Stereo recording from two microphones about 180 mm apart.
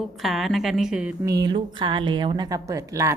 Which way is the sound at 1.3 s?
25° right (ahead or behind).